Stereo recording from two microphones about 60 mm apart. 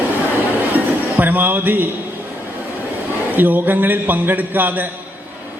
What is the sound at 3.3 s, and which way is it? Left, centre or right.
A man's voice, right.